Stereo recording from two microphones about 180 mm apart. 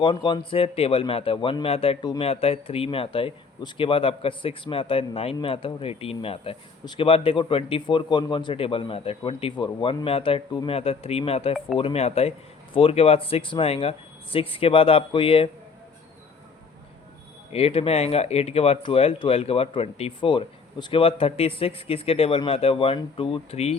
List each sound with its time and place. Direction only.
0.0 s speech: 25° left (ahead or behind)
17.5 s speech: 35° left (ahead or behind)